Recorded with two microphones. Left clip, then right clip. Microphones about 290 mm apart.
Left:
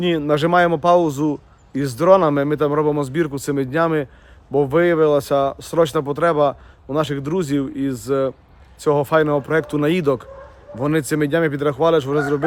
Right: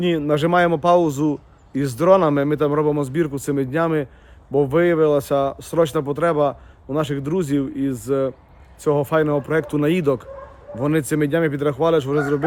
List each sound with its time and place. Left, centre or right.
0.0 s speech: centre